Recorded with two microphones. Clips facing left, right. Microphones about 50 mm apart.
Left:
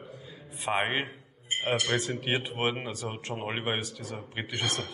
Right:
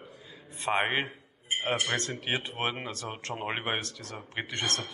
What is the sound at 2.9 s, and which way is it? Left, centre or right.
Speech, centre.